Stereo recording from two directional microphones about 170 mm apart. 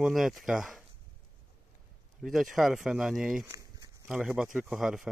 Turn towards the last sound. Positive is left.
turn(degrees=0)  # may be behind; listen again after turning